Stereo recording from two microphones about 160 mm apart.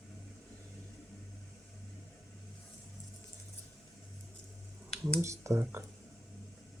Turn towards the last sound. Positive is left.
turn(degrees=-15)  # may be behind; listen again after turning